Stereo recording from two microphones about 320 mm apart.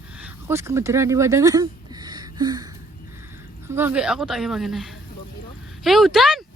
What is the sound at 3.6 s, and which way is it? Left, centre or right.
A woman's voice, centre.